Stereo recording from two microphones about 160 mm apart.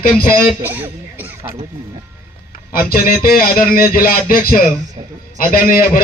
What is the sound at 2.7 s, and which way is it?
Speech, 65° left (ahead or behind).